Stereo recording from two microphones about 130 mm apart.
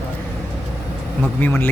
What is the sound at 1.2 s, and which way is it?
Music, 15° left (ahead or behind).